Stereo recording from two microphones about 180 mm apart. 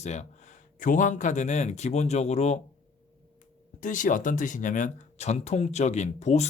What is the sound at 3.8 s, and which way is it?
Speech, 45° left (ahead or behind).